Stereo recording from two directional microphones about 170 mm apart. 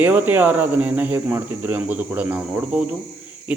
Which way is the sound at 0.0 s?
10° right (ahead or behind).